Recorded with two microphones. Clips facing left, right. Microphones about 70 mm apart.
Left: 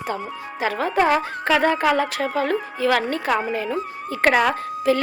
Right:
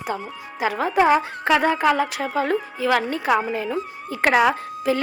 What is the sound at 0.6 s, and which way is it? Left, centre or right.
Speech, right.